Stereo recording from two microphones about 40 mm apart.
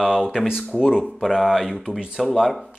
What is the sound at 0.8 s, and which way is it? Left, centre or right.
Speech, centre.